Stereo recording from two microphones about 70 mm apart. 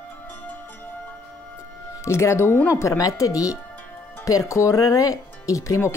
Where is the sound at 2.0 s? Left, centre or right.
Left.